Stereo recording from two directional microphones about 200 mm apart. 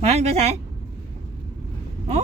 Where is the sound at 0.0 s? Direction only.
30° right (ahead or behind).